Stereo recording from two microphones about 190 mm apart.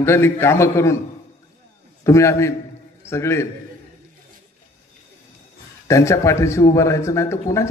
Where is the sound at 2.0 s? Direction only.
15° left (ahead or behind).